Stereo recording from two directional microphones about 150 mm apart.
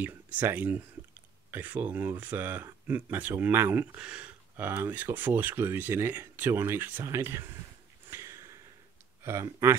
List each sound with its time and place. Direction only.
0.0 s speech: 10° right (ahead or behind)
8.1 s sniff: 20° right (ahead or behind)
9.2 s speech: 20° right (ahead or behind)